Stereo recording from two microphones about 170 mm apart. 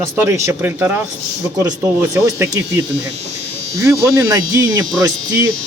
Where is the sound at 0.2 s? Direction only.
15° right (ahead or behind).